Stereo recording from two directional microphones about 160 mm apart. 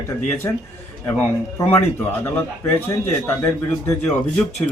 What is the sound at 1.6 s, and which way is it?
Speech, 10° left (ahead or behind).